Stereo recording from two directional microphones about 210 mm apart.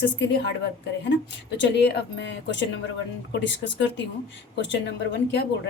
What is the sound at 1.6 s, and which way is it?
A woman's voice, 55° left (ahead or behind).